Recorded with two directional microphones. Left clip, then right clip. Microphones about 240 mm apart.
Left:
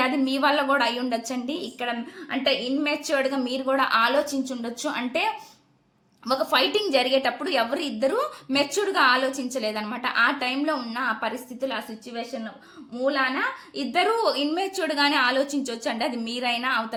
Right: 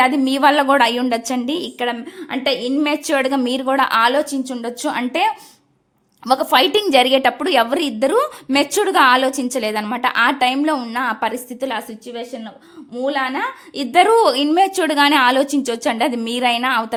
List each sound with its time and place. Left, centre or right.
0.0 s a woman's voice: right